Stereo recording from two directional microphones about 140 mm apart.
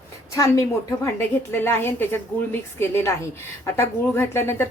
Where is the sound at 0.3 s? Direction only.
25° left (ahead or behind).